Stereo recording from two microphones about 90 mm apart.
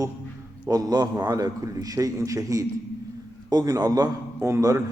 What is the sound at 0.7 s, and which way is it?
A man's voice, 45° right (ahead or behind).